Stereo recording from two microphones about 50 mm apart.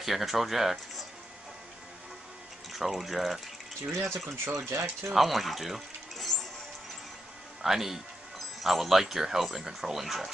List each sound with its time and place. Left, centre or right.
0.0 s speech: centre
2.7 s speech: centre
4.5 s speech: right
5.1 s speech: centre
7.6 s speech: centre